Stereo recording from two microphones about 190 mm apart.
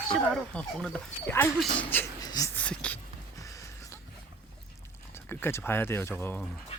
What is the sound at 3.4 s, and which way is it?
Music, 15° left (ahead or behind).